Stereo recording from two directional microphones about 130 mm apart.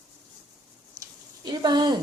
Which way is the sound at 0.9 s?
30° right (ahead or behind).